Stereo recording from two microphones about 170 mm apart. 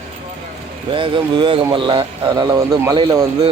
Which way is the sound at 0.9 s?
30° right (ahead or behind).